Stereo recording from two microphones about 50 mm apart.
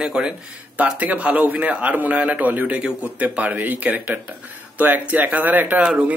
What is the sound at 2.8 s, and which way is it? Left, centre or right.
Speech, right.